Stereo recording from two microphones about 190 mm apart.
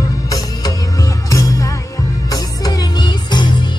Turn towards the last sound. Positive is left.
turn(degrees=25)  # may be behind; listen again after turning